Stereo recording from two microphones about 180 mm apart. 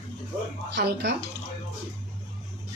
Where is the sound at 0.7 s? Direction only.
70° right (ahead or behind).